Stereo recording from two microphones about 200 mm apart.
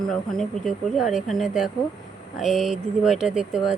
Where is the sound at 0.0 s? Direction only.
Centre (ahead or behind).